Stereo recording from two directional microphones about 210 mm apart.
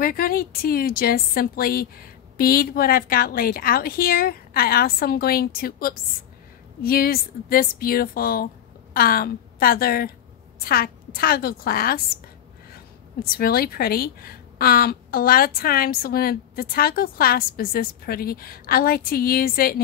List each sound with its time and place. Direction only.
0.0 s speech: 45° left (ahead or behind)
13.2 s speech: 45° left (ahead or behind)